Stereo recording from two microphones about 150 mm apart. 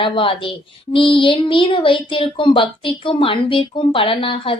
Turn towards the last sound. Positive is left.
turn(degrees=35)  # may be behind; listen again after turning